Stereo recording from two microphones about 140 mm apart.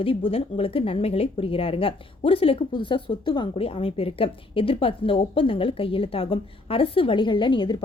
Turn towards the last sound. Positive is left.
turn(degrees=35)  # may be behind; listen again after turning